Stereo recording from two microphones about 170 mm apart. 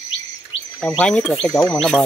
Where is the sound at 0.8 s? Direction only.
5° left (ahead or behind).